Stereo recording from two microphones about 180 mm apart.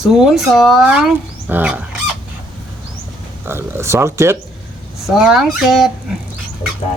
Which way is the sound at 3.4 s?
15° right (ahead or behind).